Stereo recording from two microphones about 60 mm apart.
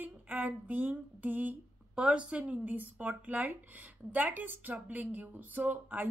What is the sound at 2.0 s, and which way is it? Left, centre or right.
Speech, centre.